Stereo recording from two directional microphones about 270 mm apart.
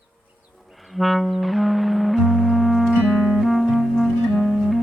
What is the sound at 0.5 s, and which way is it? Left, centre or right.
Music, centre.